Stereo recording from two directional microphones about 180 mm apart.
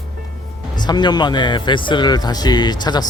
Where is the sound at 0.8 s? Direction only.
25° left (ahead or behind).